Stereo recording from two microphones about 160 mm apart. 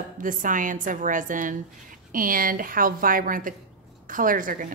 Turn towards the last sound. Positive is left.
turn(degrees=-60)  # may be behind; listen again after turning